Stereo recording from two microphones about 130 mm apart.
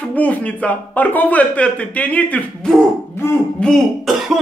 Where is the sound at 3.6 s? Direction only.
Centre (ahead or behind).